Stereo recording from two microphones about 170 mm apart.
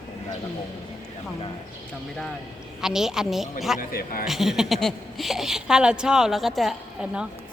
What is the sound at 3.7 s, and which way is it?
Speech, 60° left (ahead or behind).